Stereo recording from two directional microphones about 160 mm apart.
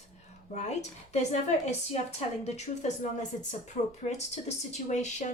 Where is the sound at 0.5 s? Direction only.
45° left (ahead or behind).